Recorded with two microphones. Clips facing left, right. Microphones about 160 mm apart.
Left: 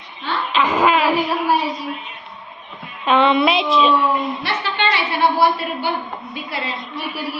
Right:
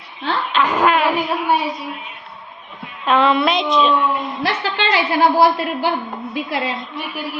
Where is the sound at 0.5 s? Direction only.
Centre (ahead or behind).